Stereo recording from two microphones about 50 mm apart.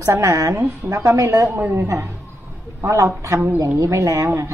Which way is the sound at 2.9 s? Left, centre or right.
Right.